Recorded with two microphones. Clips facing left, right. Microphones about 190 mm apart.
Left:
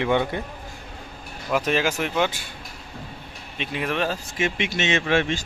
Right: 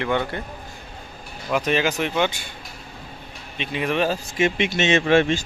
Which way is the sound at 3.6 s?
Centre (ahead or behind).